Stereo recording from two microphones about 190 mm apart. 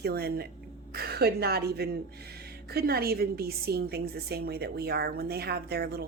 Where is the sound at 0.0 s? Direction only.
55° right (ahead or behind).